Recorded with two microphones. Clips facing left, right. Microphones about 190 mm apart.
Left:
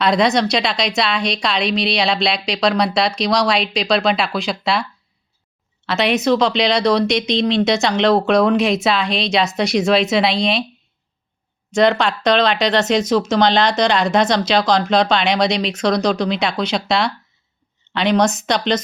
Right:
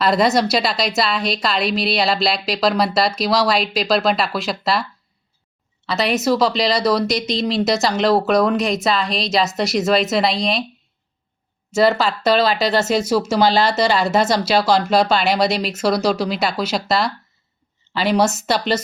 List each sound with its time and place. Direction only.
0.0 s speech: 5° right (ahead or behind)
11.7 s speech: 5° right (ahead or behind)